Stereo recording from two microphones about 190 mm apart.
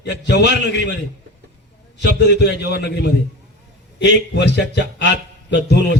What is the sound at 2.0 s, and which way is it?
Speech, 65° left (ahead or behind).